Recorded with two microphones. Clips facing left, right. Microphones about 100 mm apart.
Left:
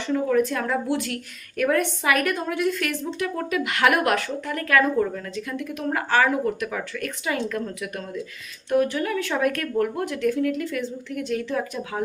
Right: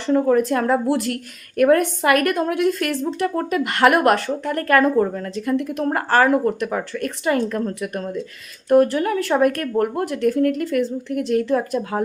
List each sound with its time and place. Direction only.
0.0 s speech: 35° right (ahead or behind); by 2.7 s 55° right (ahead or behind)
3.0 s a woman's voice: 40° right (ahead or behind)